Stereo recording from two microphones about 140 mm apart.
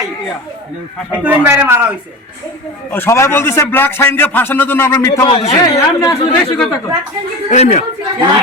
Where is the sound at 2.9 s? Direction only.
15° left (ahead or behind).